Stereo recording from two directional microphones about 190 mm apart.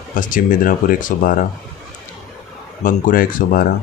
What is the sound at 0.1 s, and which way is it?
Speech, 45° left (ahead or behind).